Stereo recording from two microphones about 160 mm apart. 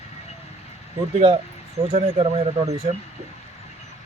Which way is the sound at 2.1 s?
35° right (ahead or behind).